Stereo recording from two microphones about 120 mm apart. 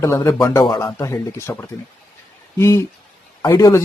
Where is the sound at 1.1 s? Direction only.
25° left (ahead or behind).